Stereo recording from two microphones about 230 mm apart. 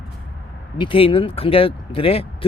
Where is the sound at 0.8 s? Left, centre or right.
Left.